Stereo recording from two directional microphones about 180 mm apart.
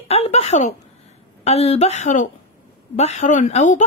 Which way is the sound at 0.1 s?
35° left (ahead or behind).